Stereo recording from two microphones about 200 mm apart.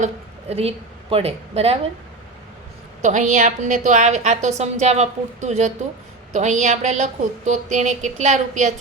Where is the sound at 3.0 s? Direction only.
40° right (ahead or behind).